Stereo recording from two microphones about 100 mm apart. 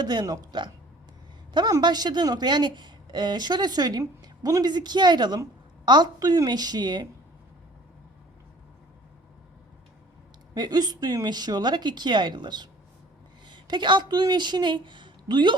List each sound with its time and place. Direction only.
0.0 s a woman's voice: 45° right (ahead or behind)
1.8 s a woman's voice: 45° right (ahead or behind)
10.5 s a woman's voice: 45° right (ahead or behind)